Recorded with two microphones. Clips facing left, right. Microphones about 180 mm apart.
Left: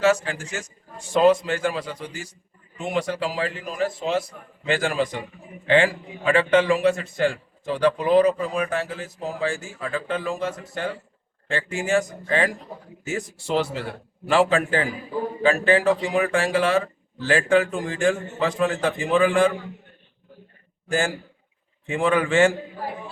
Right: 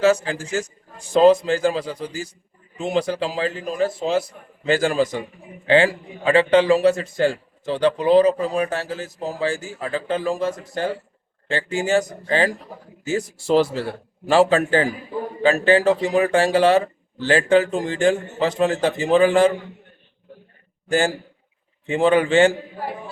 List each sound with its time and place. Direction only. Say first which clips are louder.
0.0 s a man's voice: right 3 dB; 35° right (ahead or behind)
11.4 s a man's voice: right 3 dB; 35° right (ahead or behind)
21.8 s a man's voice: right 4 dB; 35° right (ahead or behind)